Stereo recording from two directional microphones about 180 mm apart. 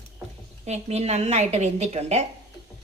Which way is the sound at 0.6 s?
35° right (ahead or behind).